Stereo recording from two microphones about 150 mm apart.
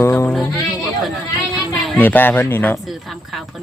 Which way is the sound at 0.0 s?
15° left (ahead or behind).